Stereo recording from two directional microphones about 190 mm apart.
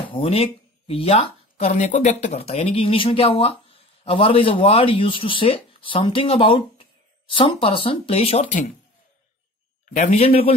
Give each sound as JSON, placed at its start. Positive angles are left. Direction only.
{"t": 0.1, "sound": "speech", "side_deg": 30}
{"t": 9.9, "sound": "a man's voice", "side_deg": 35}